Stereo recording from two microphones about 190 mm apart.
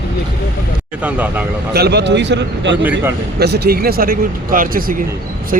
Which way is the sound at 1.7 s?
60° right (ahead or behind).